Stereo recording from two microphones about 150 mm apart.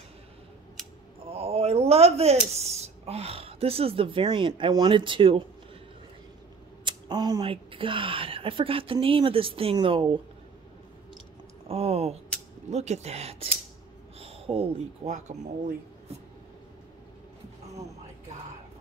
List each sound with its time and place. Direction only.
1.2 s a sound: 40° right (ahead or behind)
2.5 s speech: 45° right (ahead or behind)
6.8 s speech: 30° right (ahead or behind)
11.6 s speech: 40° right (ahead or behind)
14.2 s a sound: 40° right (ahead or behind)
15.0 s speech: 55° right (ahead or behind)